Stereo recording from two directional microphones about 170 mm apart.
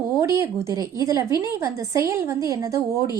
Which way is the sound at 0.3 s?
20° right (ahead or behind).